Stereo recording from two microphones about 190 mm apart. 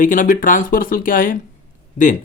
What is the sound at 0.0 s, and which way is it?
Speech, 45° left (ahead or behind).